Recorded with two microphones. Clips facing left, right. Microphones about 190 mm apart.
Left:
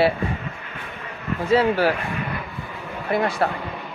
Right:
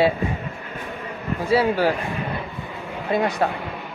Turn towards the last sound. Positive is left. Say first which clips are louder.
# even
turn(degrees=-15)  # may be behind; listen again after turning